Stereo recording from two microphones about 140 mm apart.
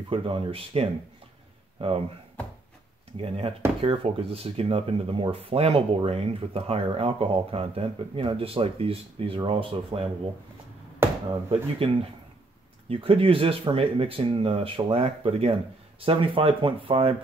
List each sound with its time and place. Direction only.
0.1 s speech: 40° right (ahead or behind)
3.2 s speech: 40° right (ahead or behind)
11.2 s speech: 40° right (ahead or behind)